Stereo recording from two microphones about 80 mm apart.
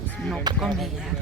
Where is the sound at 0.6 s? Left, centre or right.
Centre.